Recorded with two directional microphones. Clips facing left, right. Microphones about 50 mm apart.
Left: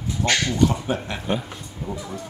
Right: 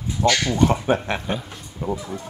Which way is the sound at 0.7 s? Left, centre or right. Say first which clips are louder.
Right 5 dB; right.